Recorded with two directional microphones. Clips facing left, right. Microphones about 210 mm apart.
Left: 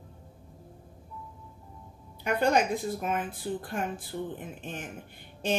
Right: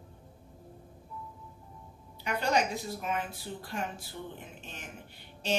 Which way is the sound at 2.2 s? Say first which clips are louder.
Left 4 dB; 50° left (ahead or behind).